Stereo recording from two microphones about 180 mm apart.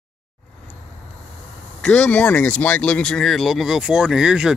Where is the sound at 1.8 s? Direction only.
5° left (ahead or behind).